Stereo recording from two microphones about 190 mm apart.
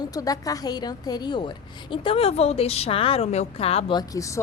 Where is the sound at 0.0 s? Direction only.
20° left (ahead or behind).